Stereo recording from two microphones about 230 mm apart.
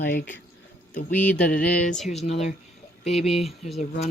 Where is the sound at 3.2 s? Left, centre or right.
Centre.